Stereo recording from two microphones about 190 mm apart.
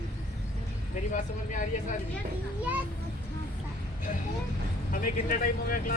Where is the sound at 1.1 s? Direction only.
40° left (ahead or behind).